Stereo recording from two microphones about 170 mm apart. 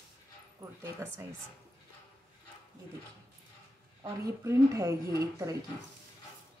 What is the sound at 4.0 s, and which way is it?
A woman's voice, 20° right (ahead or behind).